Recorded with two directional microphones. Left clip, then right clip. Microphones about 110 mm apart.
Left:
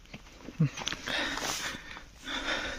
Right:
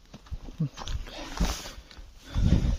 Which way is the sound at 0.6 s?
5° right (ahead or behind).